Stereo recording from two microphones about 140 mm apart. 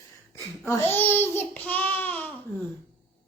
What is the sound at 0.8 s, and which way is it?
A child's voice, 15° left (ahead or behind).